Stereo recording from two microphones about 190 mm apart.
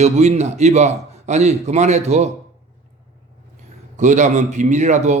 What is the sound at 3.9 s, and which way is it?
A man's voice, 40° right (ahead or behind).